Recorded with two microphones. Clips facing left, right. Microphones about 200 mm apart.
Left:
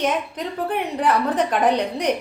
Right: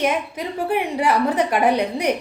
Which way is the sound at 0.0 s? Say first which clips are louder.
Right 1 dB; 10° right (ahead or behind).